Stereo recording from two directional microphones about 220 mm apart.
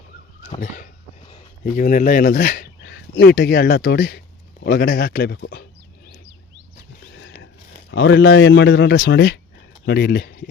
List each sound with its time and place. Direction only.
1.7 s speech: 40° left (ahead or behind)
7.9 s speech: 55° left (ahead or behind)